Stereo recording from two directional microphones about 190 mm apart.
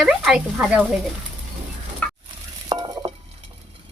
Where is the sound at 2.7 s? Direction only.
25° right (ahead or behind).